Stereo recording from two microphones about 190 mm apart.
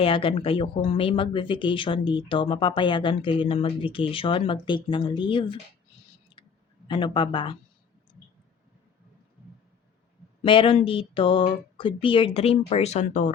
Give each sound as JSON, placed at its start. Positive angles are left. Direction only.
{"t": 0.0, "sound": "speech", "side_deg": 30}
{"t": 6.4, "sound": "a sound", "side_deg": 25}
{"t": 6.8, "sound": "speech", "side_deg": 25}
{"t": 10.4, "sound": "speech", "side_deg": 25}